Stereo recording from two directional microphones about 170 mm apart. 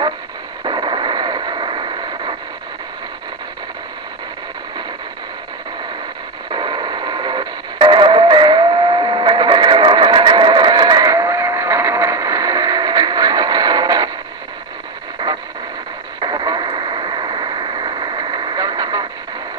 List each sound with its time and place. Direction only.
0.6 s a sound: 25° right (ahead or behind)
6.5 s radio: 25° right (ahead or behind)
16.2 s radio: 25° right (ahead or behind)